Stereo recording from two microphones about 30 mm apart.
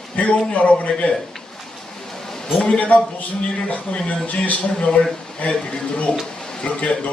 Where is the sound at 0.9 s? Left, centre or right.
Centre.